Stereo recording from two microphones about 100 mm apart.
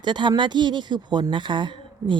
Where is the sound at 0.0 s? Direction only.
50° right (ahead or behind).